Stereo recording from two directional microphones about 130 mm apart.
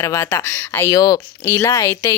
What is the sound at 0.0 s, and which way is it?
Speech, 20° left (ahead or behind).